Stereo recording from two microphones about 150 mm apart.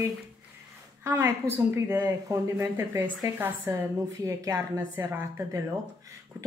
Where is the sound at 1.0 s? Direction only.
15° right (ahead or behind).